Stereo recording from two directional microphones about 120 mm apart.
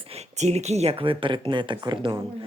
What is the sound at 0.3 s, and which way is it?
Speech, 70° right (ahead or behind).